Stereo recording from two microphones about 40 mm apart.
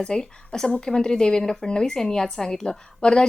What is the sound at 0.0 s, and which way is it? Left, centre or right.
Speech, centre.